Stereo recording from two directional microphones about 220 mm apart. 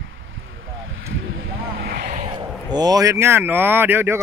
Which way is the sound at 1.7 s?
45° right (ahead or behind).